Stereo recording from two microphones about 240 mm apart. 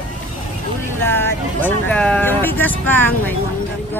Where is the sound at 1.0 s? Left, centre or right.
Centre.